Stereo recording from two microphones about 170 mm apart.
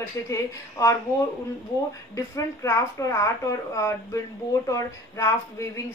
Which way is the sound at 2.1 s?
20° left (ahead or behind).